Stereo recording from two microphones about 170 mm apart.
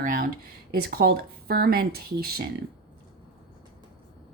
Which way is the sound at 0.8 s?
65° right (ahead or behind).